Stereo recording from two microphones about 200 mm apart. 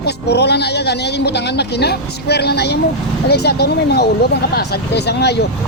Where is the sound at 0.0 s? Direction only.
55° left (ahead or behind).